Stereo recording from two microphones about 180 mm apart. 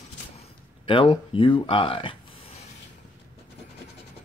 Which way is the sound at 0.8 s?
30° left (ahead or behind).